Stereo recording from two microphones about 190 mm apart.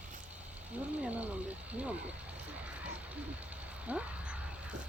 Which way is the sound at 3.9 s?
5° right (ahead or behind).